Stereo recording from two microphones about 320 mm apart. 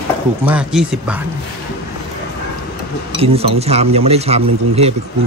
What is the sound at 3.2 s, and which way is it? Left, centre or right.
Speech, centre.